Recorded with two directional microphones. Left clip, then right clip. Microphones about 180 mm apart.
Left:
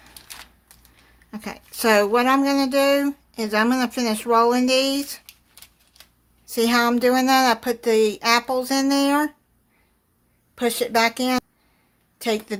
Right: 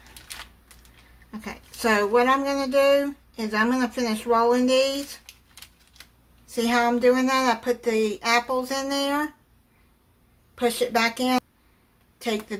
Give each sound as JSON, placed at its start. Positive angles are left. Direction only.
{"t": 1.3, "sound": "speech", "side_deg": 50}
{"t": 6.4, "sound": "speech", "side_deg": 55}
{"t": 10.5, "sound": "speech", "side_deg": 50}